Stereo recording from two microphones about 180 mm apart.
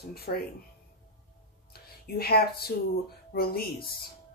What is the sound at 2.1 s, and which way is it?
Speech, 60° left (ahead or behind).